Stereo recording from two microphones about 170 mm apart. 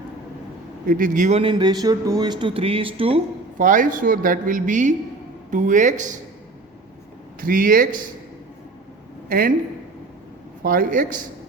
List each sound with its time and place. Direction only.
0.9 s speech: 50° right (ahead or behind)
1.4 s speech: 30° right (ahead or behind)
3.6 s speech: 50° right (ahead or behind)
7.4 s speech: 55° right (ahead or behind)
10.6 s speech: 55° right (ahead or behind)